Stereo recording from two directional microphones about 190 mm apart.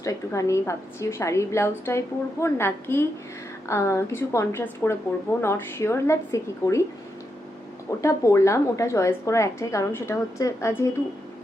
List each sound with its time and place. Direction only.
0.0 s a woman's voice: 15° left (ahead or behind)
8.0 s a woman's voice: 15° left (ahead or behind)